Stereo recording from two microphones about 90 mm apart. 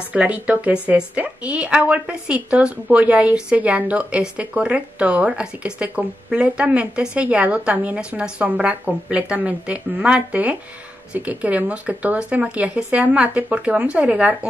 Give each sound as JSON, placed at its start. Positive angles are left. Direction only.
{"t": 0.1, "sound": "a woman's voice", "side_deg": -15}